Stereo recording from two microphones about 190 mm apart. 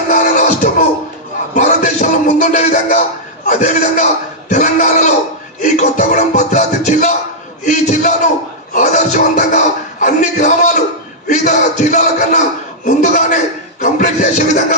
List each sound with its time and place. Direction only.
0.1 s music: 40° left (ahead or behind)
1.5 s a man's voice: 40° left (ahead or behind)